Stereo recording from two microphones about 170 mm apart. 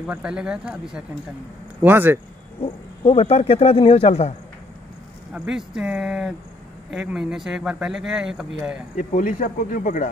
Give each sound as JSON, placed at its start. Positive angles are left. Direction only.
{"t": 0.0, "sound": "speech", "side_deg": -5}
{"t": 2.6, "sound": "speech", "side_deg": 35}
{"t": 5.3, "sound": "speech", "side_deg": -5}
{"t": 8.9, "sound": "speech", "side_deg": 50}